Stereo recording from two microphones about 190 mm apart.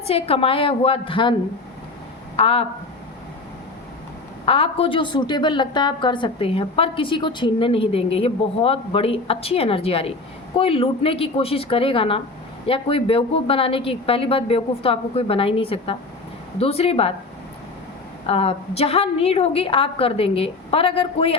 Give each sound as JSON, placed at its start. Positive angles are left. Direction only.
{"t": 0.0, "sound": "a woman's voice", "side_deg": 30}
{"t": 4.4, "sound": "a woman's voice", "side_deg": 30}
{"t": 18.3, "sound": "a woman's voice", "side_deg": 30}